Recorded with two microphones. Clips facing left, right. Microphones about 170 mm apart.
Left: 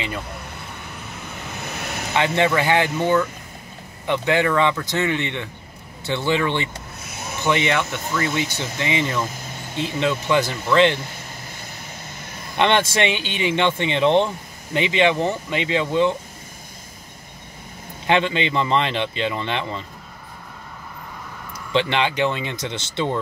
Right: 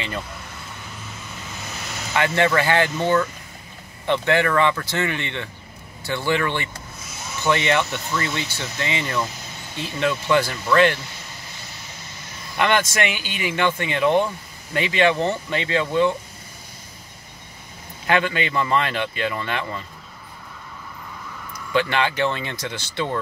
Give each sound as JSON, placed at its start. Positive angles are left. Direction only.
{"t": 1.5, "sound": "vehicle", "side_deg": 60}
{"t": 2.1, "sound": "speech", "side_deg": 20}
{"t": 7.0, "sound": "a sound", "side_deg": 60}
{"t": 7.4, "sound": "speech", "side_deg": 15}
{"t": 8.5, "sound": "speech", "side_deg": 20}
{"t": 12.5, "sound": "speech", "side_deg": 25}
{"t": 18.0, "sound": "speech", "side_deg": 25}
{"t": 21.7, "sound": "speech", "side_deg": 20}